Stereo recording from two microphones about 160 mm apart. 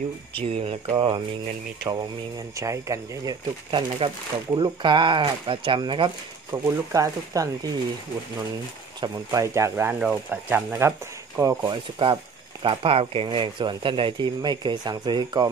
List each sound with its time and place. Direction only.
0.4 s speech: 35° right (ahead or behind)
1.9 s speech: 20° right (ahead or behind)
9.0 s speech: 20° right (ahead or behind)
11.6 s speech: 30° right (ahead or behind)